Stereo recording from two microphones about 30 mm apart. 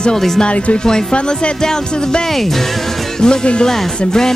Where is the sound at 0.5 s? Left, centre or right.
Left.